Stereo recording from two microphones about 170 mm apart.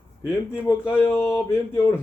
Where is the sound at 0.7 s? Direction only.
15° left (ahead or behind).